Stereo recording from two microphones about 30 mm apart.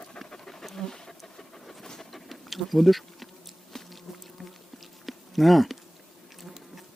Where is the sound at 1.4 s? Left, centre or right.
Centre.